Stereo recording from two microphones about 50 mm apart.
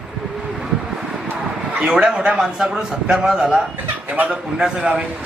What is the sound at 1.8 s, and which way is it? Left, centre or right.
A man's voice, centre.